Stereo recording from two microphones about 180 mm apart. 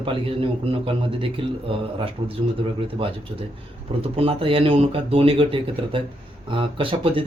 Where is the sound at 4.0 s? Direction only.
30° right (ahead or behind).